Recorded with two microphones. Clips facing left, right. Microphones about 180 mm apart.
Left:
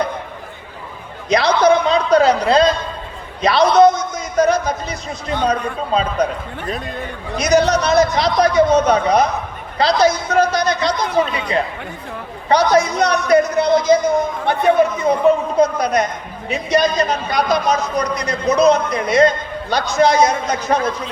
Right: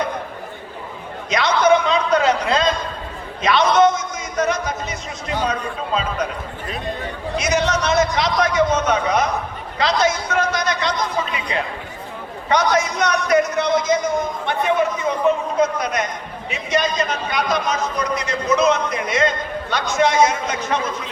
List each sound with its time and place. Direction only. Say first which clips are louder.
1.3 s a man's voice: left 3 dB; 35° left (ahead or behind)
7.3 s a man's voice: left 6 dB; 40° left (ahead or behind)